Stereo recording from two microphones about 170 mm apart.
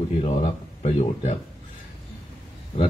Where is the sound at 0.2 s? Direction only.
35° left (ahead or behind).